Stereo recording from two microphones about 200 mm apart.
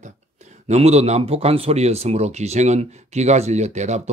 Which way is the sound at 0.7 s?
30° right (ahead or behind).